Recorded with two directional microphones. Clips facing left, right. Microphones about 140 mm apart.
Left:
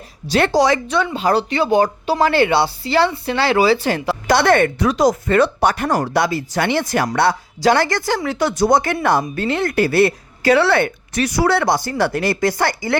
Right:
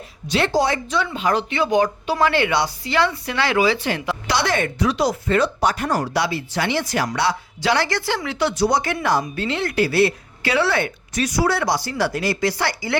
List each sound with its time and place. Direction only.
0.3 s a woman's voice: 65° left (ahead or behind); by 0.9 s 80° left
1.1 s speech: 35° left (ahead or behind)
4.3 s a woman's voice: 55° left (ahead or behind)
10.6 s speech: 60° left (ahead or behind)